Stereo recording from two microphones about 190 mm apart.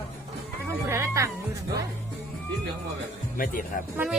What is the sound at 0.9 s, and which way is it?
Music, 15° right (ahead or behind).